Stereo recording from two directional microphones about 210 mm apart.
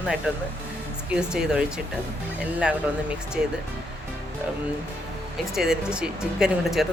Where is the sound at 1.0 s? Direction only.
5° right (ahead or behind).